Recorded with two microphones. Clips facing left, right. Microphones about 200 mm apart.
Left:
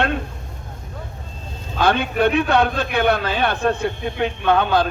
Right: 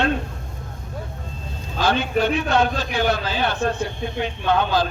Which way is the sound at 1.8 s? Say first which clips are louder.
Left 2 dB; 60° left (ahead or behind).